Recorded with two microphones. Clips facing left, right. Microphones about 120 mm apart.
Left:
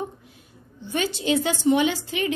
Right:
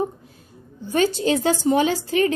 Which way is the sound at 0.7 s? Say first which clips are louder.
Right 6 dB; 40° right (ahead or behind).